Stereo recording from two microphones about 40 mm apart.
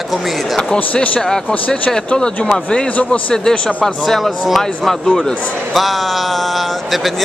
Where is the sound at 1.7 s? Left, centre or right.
Centre.